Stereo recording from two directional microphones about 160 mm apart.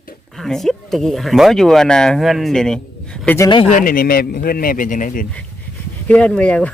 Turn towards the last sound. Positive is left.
turn(degrees=10)  # may be behind; listen again after turning